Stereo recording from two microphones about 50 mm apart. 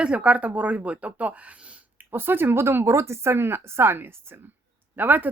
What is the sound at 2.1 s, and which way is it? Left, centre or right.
Speech, right.